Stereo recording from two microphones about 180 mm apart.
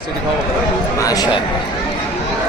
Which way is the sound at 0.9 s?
20° left (ahead or behind).